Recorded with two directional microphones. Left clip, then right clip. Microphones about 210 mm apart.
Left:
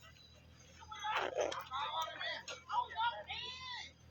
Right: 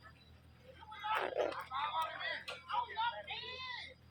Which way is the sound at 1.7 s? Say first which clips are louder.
Right 2 dB; 10° left (ahead or behind).